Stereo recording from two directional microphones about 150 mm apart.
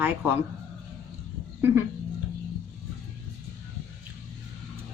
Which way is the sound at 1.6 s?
15° right (ahead or behind).